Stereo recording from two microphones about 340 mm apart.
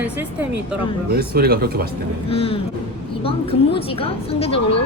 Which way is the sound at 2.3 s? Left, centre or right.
Centre.